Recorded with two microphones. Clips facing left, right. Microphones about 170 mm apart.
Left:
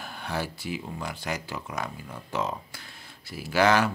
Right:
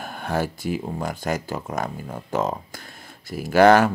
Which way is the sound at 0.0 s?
50° right (ahead or behind).